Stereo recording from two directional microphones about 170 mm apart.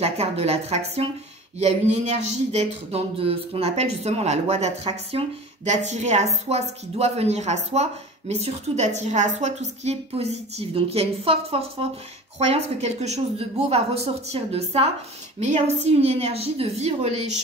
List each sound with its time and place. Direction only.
0.0 s a woman's voice: 35° right (ahead or behind)